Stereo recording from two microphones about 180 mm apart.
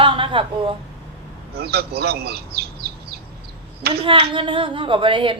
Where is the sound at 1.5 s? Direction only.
60° right (ahead or behind).